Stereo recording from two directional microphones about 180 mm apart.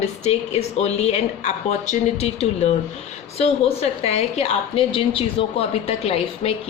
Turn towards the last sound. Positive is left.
turn(degrees=35)  # may be behind; listen again after turning